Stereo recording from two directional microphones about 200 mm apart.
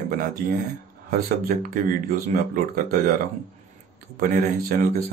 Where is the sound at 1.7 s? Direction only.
45° right (ahead or behind).